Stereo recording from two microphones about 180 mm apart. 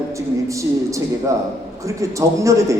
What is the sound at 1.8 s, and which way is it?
Speech, 15° right (ahead or behind).